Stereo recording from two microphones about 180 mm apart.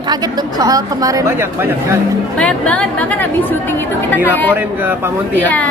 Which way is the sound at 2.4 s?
5° left (ahead or behind).